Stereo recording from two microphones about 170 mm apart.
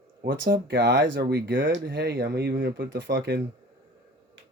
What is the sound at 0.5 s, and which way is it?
Speech, 60° right (ahead or behind).